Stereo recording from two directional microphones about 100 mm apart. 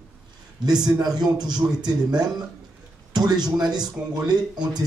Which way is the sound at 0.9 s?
40° right (ahead or behind).